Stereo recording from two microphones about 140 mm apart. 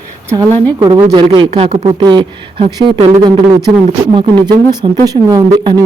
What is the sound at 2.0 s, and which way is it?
Speech, 35° right (ahead or behind).